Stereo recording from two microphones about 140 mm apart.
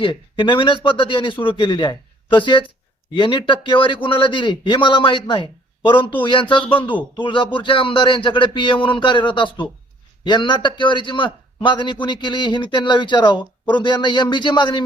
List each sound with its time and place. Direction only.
0.0 s a man's voice: 35° left (ahead or behind)